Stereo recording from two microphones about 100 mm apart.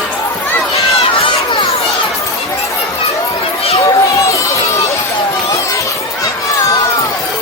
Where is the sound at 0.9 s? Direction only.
85° left; by 1.6 s 65° left (ahead or behind).